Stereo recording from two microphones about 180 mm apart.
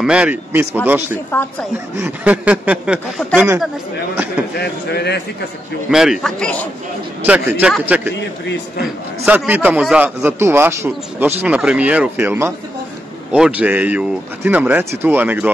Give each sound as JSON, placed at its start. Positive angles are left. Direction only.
{"t": 0.0, "sound": "a man's voice", "side_deg": -5}
{"t": 4.6, "sound": "speech", "side_deg": 65}
{"t": 5.9, "sound": "a man's voice", "side_deg": 0}
{"t": 7.2, "sound": "a man's voice", "side_deg": -10}
{"t": 8.2, "sound": "a man's voice", "side_deg": 70}
{"t": 9.2, "sound": "a man's voice", "side_deg": -10}